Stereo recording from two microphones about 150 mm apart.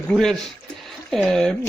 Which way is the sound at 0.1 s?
5° left (ahead or behind).